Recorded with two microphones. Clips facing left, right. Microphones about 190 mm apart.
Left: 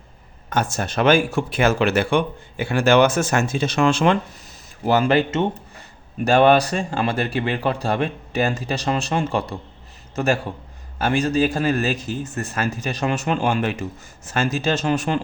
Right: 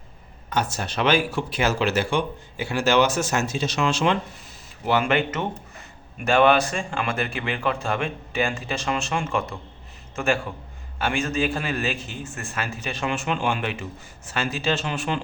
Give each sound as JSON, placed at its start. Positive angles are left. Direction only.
{"t": 0.5, "sound": "speech", "side_deg": 50}
{"t": 4.9, "sound": "a man's voice", "side_deg": 35}